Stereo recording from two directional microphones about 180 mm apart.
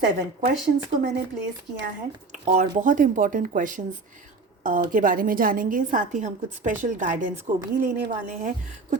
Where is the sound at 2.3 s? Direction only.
45° right (ahead or behind).